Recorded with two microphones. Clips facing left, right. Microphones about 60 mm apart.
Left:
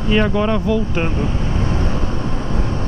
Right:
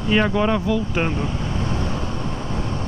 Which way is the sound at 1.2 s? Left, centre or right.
Left.